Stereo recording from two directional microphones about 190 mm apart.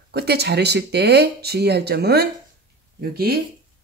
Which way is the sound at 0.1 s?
60° right (ahead or behind).